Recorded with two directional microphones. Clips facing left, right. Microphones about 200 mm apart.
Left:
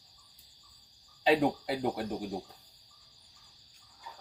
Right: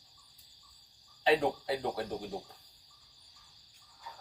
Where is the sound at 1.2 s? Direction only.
15° left (ahead or behind).